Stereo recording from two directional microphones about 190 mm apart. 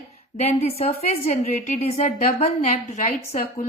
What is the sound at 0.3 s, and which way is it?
A woman's voice, 35° left (ahead or behind).